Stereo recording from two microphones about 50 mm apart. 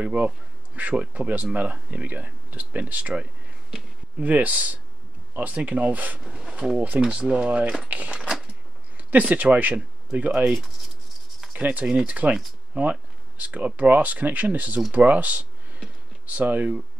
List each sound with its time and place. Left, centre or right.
0.0 s speech: right
6.3 s speech: centre
8.2 s a sound: centre
8.9 s speech: right
11.5 s speech: right
11.8 s speech: centre
12.7 s speech: right